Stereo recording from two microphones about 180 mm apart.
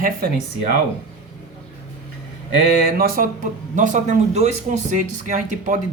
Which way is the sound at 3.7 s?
45° right (ahead or behind).